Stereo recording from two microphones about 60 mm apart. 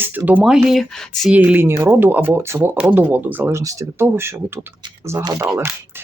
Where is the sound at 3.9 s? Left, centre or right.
Right.